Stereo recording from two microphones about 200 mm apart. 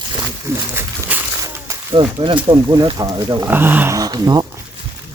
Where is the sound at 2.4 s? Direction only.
20° right (ahead or behind).